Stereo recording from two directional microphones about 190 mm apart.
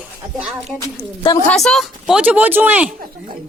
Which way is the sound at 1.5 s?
Centre (ahead or behind).